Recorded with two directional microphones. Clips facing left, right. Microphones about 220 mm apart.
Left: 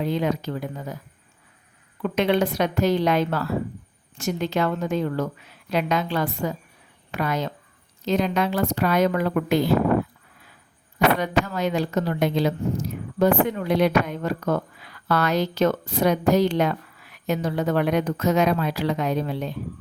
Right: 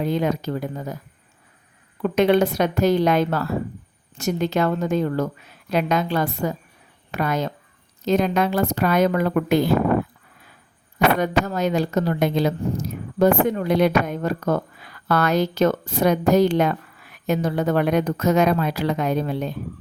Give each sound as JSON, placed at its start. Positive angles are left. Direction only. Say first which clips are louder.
{"t": 0.0, "sound": "speech", "louder": "right 2 dB", "side_deg": -45}
{"t": 2.0, "sound": "speech", "louder": "right 4 dB", "side_deg": -45}
{"t": 11.2, "sound": "speech", "louder": "right 2 dB", "side_deg": -45}